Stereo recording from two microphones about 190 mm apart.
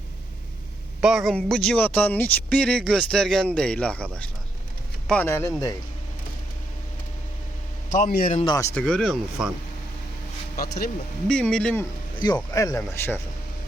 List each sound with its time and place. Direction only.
1.0 s speech: centre (ahead or behind); by 5.7 s 20° left (ahead or behind)
7.9 s a man's voice: 50° left (ahead or behind)
8.7 s speech: 5° left (ahead or behind)
11.3 s speech: 5° left (ahead or behind)
12.1 s speech: 20° left (ahead or behind)